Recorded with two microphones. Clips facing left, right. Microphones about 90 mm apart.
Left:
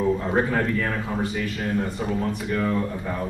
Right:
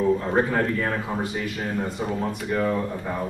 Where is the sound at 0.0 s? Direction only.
Centre (ahead or behind).